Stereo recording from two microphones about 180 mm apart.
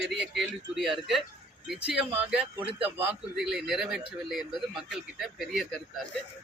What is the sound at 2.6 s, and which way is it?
Speech, 30° right (ahead or behind).